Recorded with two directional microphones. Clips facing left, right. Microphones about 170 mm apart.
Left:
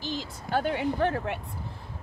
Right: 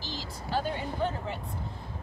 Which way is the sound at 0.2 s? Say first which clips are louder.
Left 1 dB; 60° left (ahead or behind).